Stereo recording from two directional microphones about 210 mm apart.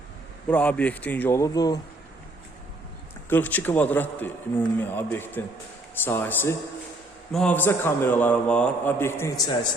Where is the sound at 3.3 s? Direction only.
10° left (ahead or behind).